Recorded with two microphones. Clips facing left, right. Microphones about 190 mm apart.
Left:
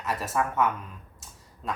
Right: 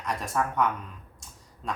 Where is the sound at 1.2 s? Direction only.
5° left (ahead or behind).